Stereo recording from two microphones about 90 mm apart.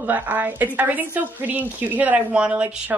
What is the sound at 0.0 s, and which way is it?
A woman's voice, 20° right (ahead or behind).